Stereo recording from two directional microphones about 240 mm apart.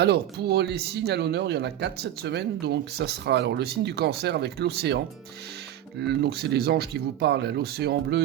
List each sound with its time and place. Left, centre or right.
0.0 s speech: right
6.0 s speech: right